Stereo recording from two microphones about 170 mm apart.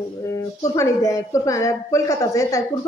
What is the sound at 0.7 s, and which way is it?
Speech, 20° left (ahead or behind).